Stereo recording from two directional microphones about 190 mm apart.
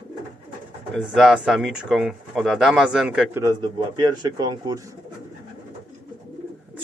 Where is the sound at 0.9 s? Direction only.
Centre (ahead or behind).